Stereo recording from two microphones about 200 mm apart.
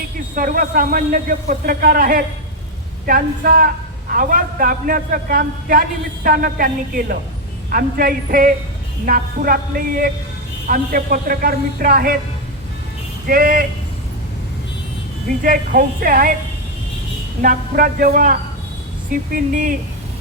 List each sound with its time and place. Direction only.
0.3 s a man's voice: 45° right (ahead or behind)
13.2 s a man's voice: 45° right (ahead or behind)
15.4 s a man's voice: 45° right (ahead or behind)
17.4 s a man's voice: 45° right (ahead or behind)